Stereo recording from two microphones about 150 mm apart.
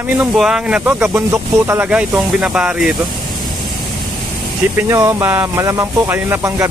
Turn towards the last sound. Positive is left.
turn(degrees=-15)  # may be behind; listen again after turning